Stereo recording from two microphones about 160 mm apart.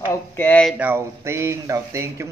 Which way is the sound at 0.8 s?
15° right (ahead or behind).